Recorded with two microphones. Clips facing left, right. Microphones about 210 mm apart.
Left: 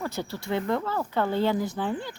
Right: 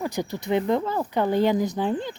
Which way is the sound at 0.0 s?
15° right (ahead or behind).